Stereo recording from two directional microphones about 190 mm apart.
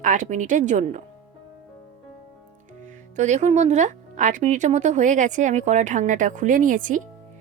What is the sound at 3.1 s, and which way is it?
Speech, 40° right (ahead or behind).